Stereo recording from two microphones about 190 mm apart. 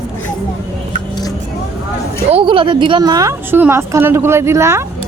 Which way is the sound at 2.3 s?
25° right (ahead or behind).